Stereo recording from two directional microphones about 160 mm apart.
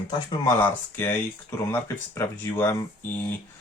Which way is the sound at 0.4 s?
15° left (ahead or behind).